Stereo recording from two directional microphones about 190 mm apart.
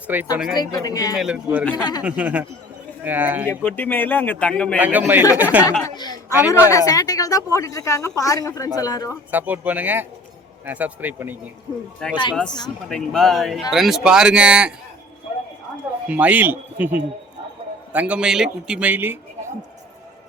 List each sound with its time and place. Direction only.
0.1 s speech: 10° right (ahead or behind)
0.5 s speech: 20° left (ahead or behind)
1.1 s speech: 5° right (ahead or behind)
1.7 s speech: 20° left (ahead or behind)
2.0 s speech: 5° right (ahead or behind)
3.5 s speech: 10° left (ahead or behind)
4.8 s speech: 10° right (ahead or behind)
5.8 s a sound: 20° left (ahead or behind)
6.5 s speech: 15° left (ahead or behind)
9.3 s speech: 10° right (ahead or behind)
12.3 s speech: 5° left (ahead or behind)
16.0 s speech: 10° right (ahead or behind)